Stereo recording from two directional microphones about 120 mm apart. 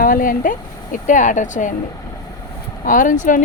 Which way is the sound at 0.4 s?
90° left.